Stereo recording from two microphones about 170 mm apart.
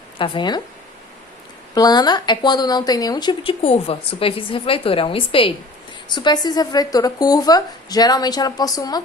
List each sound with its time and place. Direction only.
0.2 s speech: 25° left (ahead or behind)
1.7 s speech: 25° left (ahead or behind)